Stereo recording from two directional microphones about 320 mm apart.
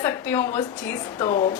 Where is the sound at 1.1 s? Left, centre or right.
Centre.